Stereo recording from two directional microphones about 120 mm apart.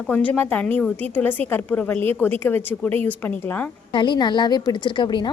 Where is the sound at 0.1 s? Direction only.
15° left (ahead or behind).